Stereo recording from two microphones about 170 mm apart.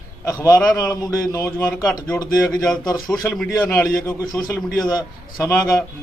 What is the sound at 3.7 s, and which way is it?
Speech, 20° left (ahead or behind).